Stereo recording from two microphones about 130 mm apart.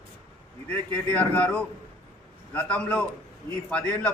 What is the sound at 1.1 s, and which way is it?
A man's voice, 10° left (ahead or behind).